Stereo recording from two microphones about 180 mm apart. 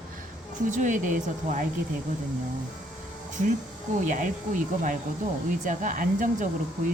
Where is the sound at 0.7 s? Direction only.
45° right (ahead or behind).